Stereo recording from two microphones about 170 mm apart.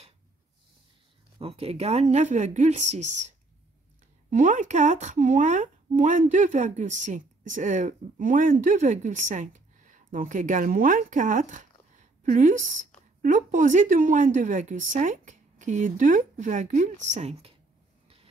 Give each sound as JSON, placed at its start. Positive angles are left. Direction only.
{"t": 1.4, "sound": "a woman's voice", "side_deg": -35}